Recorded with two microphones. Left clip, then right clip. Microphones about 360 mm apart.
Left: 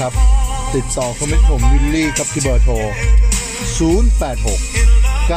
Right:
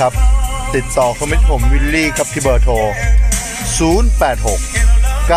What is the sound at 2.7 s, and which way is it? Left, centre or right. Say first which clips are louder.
Music: right 6 dB; right.